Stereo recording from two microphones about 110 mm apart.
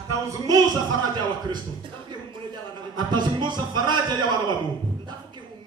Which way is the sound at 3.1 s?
45° right (ahead or behind).